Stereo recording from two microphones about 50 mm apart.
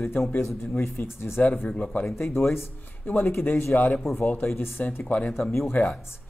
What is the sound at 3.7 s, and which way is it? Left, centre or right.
Speech, left.